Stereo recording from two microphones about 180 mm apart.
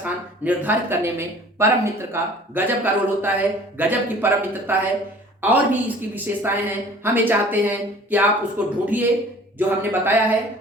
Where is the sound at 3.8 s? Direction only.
10° right (ahead or behind).